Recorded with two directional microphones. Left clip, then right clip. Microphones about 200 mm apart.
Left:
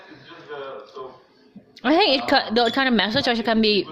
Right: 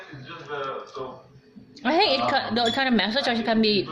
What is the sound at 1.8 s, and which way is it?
A woman's voice, 50° left (ahead or behind).